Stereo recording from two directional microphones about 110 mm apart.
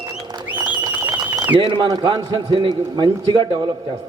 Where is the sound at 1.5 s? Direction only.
45° right (ahead or behind).